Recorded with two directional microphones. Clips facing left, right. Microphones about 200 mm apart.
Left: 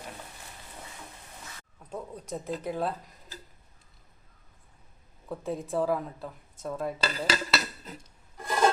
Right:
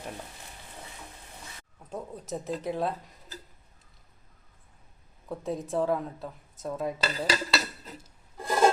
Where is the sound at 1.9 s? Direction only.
Centre (ahead or behind).